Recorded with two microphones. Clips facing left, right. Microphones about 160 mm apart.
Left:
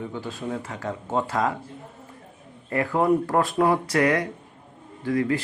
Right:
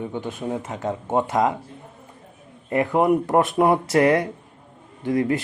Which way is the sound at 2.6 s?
20° right (ahead or behind).